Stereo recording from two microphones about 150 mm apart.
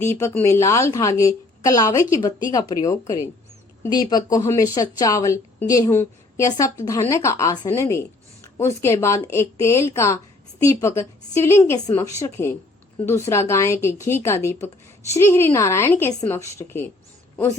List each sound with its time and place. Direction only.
0.0 s a woman's voice: 15° left (ahead or behind)